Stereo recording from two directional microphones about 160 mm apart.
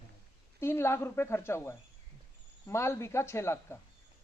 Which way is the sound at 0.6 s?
15° left (ahead or behind).